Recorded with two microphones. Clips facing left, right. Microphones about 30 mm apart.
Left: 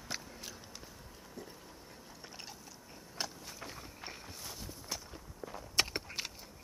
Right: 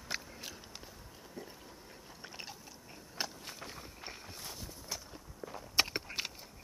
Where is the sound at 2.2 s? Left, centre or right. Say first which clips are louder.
Right 3 dB; centre.